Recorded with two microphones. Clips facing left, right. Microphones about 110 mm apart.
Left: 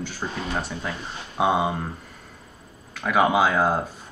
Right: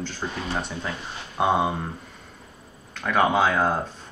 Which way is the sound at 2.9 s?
5° left (ahead or behind).